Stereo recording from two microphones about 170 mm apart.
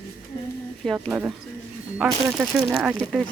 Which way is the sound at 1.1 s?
10° right (ahead or behind).